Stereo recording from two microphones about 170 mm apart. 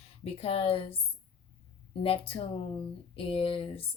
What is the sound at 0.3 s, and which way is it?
Speech, 35° left (ahead or behind).